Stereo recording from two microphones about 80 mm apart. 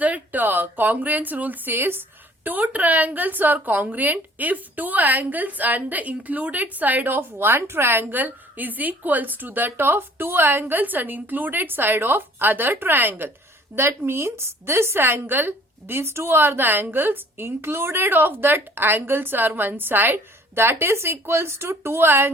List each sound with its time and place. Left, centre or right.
0.0 s speech: right